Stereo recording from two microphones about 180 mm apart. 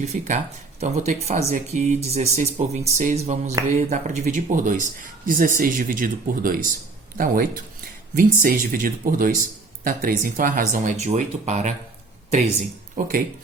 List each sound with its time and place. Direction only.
0.0 s speech: 40° right (ahead or behind)